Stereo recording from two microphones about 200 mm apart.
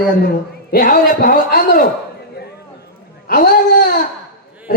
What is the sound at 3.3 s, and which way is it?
Speech, 45° left (ahead or behind).